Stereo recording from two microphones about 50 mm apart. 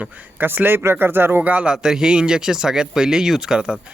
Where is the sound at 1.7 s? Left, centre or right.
Centre.